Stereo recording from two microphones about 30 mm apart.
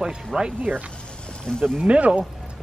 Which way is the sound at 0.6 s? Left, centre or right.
Right.